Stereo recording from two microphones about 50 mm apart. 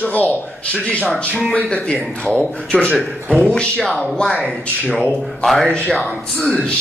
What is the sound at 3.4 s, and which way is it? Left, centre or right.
Speech, centre.